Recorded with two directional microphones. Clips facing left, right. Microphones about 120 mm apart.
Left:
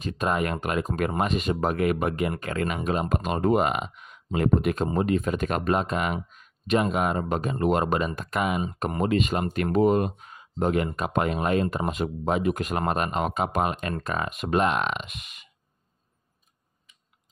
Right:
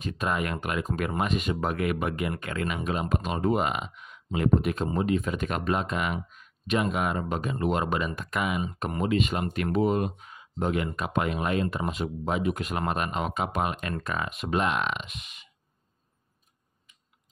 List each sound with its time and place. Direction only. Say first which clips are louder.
0.0 s speech: left 3 dB; 40° left (ahead or behind)
15.0 s speech: left 1 dB; 55° left (ahead or behind)